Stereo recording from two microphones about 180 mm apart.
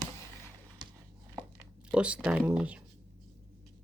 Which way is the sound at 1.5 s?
5° right (ahead or behind).